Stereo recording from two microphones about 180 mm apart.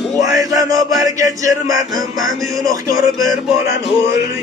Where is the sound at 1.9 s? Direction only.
Centre (ahead or behind).